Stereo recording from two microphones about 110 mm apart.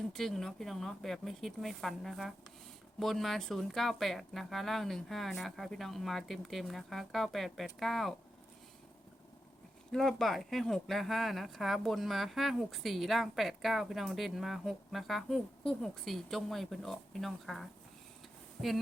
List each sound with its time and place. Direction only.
0.1 s speech: 5° left (ahead or behind)
9.9 s speech: 5° left (ahead or behind)